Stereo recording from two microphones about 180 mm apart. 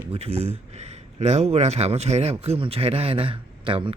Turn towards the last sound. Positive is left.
turn(degrees=-30)  # may be behind; listen again after turning